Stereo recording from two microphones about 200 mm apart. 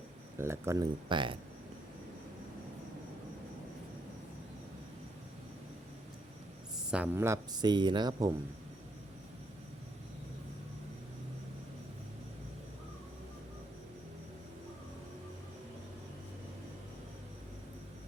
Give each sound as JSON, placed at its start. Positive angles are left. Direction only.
{"t": 0.3, "sound": "speech", "side_deg": -15}
{"t": 6.9, "sound": "speech", "side_deg": -10}